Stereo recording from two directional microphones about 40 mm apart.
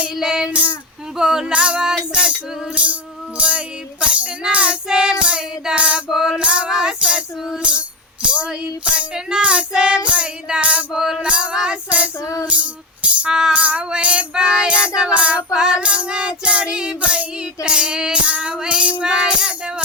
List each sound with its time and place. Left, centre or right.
0.2 s child singing: centre
2.7 s music: right
4.0 s child singing: right
4.9 s child singing: centre
6.1 s child singing: centre
6.4 s child singing: right
7.6 s music: right
9.1 s child singing: right
10.9 s child singing: centre
11.2 s child singing: right
11.9 s music: right
13.5 s child singing: right
15.5 s child singing: centre
19.1 s child singing: centre